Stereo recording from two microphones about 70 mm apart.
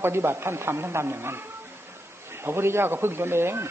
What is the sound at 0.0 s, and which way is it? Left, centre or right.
Speech, right.